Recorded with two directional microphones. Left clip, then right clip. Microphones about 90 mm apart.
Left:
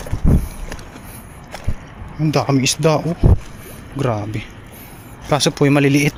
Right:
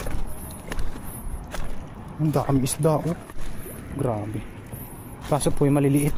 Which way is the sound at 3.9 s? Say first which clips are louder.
Left 6 dB; 40° left (ahead or behind).